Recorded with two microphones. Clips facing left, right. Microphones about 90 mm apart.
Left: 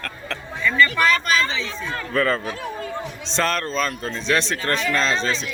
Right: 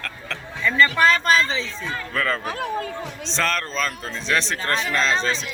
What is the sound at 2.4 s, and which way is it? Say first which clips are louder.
Speech: right 3 dB; 55° right (ahead or behind).